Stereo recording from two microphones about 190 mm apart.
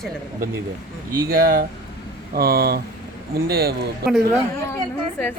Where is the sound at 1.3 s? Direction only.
50° right (ahead or behind).